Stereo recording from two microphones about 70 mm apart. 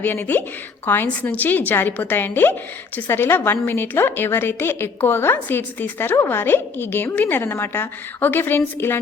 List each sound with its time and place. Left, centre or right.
0.0 s a woman's voice: left